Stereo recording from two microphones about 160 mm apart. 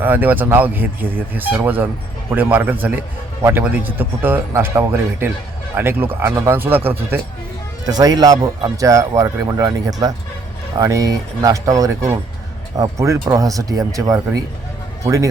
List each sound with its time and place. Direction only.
0.0 s a man's voice: 10° right (ahead or behind)
7.9 s speech: 25° right (ahead or behind)